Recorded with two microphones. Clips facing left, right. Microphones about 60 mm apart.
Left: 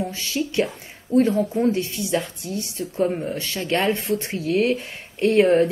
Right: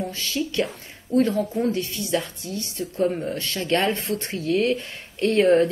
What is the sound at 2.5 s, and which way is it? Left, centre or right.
Speech, left.